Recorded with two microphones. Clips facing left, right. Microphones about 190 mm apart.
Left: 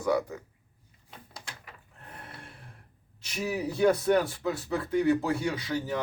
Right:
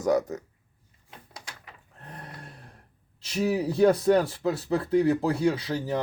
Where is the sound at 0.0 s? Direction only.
40° right (ahead or behind).